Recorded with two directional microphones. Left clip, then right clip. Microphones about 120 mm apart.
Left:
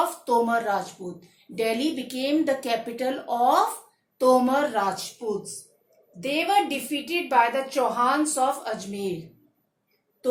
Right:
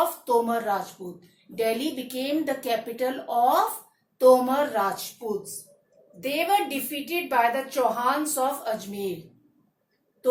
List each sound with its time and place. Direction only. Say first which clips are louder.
0.0 s a woman's voice: even; 40° left (ahead or behind)
6.1 s a woman's voice: left 1 dB; 35° left (ahead or behind)